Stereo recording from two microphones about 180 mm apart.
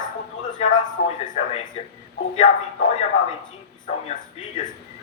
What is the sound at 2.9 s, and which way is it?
Speech, 35° left (ahead or behind).